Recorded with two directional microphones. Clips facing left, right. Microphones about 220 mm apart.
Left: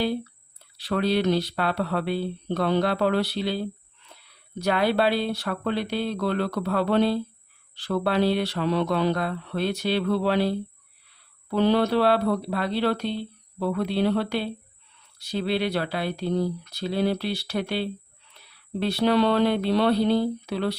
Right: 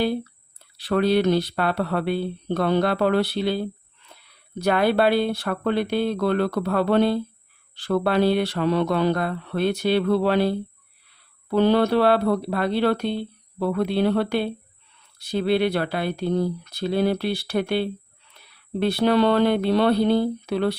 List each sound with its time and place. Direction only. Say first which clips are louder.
0.8 s speech: right 4 dB; 50° right (ahead or behind)
4.6 s speech: right 3 dB; 50° right (ahead or behind)
11.5 s speech: right 3 dB; 50° right (ahead or behind)